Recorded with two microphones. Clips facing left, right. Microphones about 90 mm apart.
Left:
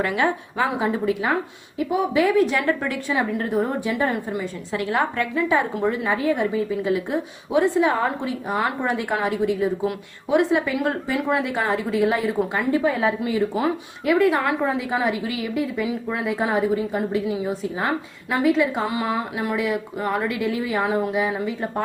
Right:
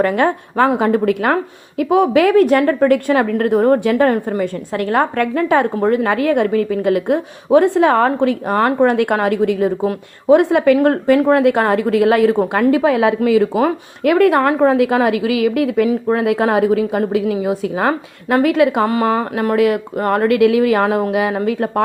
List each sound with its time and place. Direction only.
0.0 s a woman's voice: 50° right (ahead or behind)
1.8 s a woman's voice: 75° right (ahead or behind)
12.5 s speech: 90° right; by 14.8 s 55° right (ahead or behind)
14.8 s speech: 75° right (ahead or behind)
15.9 s speech: 45° right (ahead or behind)
16.2 s a woman's voice: 70° right (ahead or behind)
18.4 s speech: 70° right (ahead or behind)